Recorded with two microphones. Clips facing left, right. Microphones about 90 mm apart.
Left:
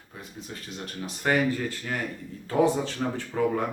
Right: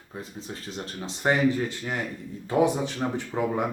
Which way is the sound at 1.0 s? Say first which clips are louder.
Right 2 dB; 20° right (ahead or behind).